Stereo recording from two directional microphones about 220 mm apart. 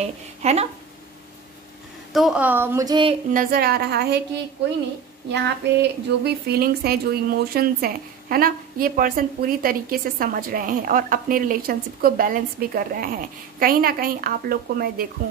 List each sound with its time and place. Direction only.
0.0 s speech: 30° right (ahead or behind)
2.1 s a woman's voice: 5° right (ahead or behind); by 3.2 s 20° right (ahead or behind)
3.3 s a woman's voice: 45° right (ahead or behind)
5.3 s speech: 50° right (ahead or behind)